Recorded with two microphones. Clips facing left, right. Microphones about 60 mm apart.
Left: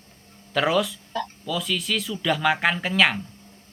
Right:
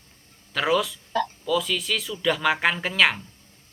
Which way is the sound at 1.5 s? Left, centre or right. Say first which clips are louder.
Right 2 dB; centre.